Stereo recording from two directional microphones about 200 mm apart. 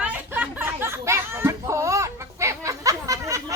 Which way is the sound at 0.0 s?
10° right (ahead or behind).